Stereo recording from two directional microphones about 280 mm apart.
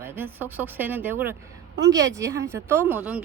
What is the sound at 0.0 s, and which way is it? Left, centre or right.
A woman's voice, centre.